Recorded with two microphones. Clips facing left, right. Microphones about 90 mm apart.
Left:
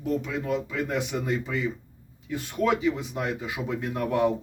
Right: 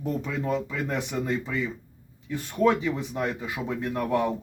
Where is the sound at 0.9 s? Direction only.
10° left (ahead or behind).